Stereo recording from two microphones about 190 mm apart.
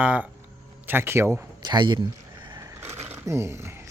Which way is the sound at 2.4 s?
20° right (ahead or behind).